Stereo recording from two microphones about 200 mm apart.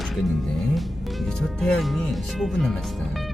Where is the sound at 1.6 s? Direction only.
5° left (ahead or behind).